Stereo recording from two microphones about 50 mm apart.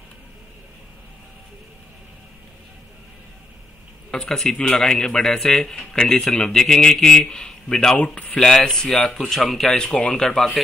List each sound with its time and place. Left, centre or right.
4.3 s speech: centre
8.0 s speech: left
8.4 s speech: centre
9.9 s speech: left
10.2 s speech: centre